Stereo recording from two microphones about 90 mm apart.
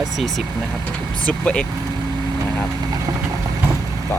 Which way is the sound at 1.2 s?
15° left (ahead or behind).